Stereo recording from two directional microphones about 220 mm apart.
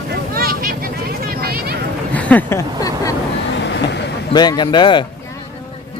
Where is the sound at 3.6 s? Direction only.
50° left (ahead or behind).